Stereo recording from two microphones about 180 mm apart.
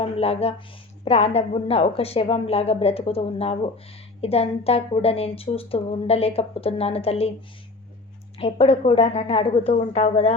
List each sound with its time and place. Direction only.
0.0 s a woman's voice: 35° left (ahead or behind)
8.4 s a woman's voice: 35° left (ahead or behind)